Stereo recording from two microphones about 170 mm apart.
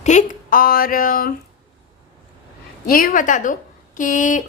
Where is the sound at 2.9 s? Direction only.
55° left (ahead or behind).